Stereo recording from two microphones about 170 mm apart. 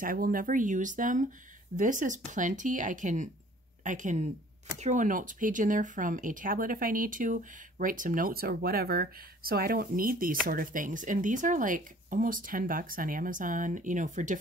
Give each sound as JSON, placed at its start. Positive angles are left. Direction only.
{"t": 0.0, "sound": "speech", "side_deg": -55}